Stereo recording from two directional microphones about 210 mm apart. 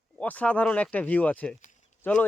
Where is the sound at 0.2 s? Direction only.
5° left (ahead or behind).